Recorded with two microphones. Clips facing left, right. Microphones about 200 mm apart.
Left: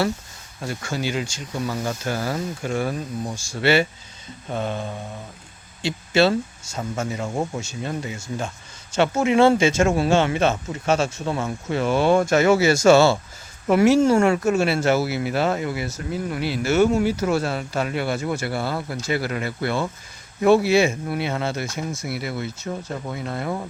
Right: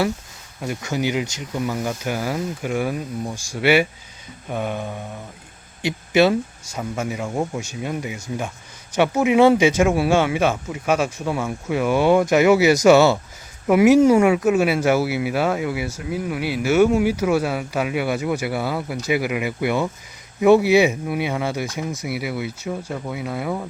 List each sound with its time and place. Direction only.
0.6 s speech: 20° right (ahead or behind)
7.2 s speech: centre (ahead or behind)
7.6 s speech: 15° right (ahead or behind)